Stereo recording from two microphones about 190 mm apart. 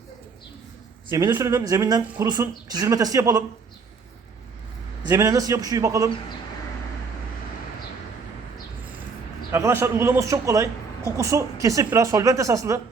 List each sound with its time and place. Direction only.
1.1 s a man's voice: 20° right (ahead or behind)
5.0 s a man's voice: 15° right (ahead or behind)
9.5 s a man's voice: 15° right (ahead or behind)